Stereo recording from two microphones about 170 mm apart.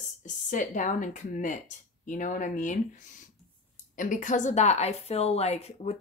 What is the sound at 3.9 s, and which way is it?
A woman's voice, 50° left (ahead or behind).